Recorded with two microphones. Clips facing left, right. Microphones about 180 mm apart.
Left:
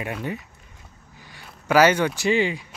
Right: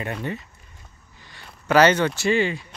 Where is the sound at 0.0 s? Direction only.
10° left (ahead or behind).